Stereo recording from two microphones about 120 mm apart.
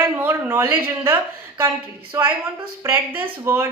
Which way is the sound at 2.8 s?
15° right (ahead or behind).